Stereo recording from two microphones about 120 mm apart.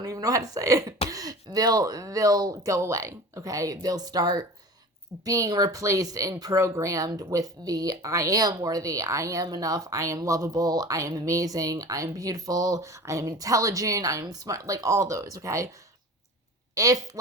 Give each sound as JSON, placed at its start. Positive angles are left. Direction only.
{"t": 0.0, "sound": "speech", "side_deg": -30}
{"t": 16.7, "sound": "speech", "side_deg": -30}